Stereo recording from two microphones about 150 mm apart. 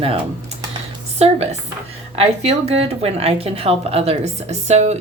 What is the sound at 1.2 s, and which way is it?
A woman's voice, 45° right (ahead or behind).